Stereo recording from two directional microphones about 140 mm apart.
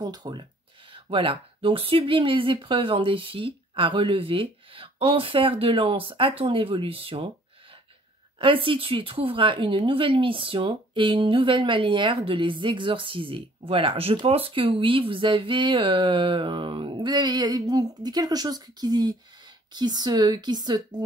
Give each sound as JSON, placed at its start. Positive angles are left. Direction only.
{"t": 0.0, "sound": "speech", "side_deg": -30}
{"t": 8.4, "sound": "speech", "side_deg": -40}